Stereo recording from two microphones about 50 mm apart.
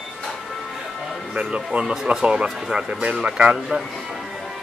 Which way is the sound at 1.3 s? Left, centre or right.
Centre.